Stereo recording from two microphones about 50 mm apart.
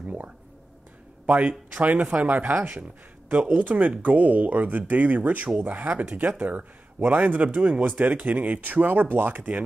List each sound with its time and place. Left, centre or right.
0.0 s a sound: right
1.2 s speech: right
3.5 s speech: right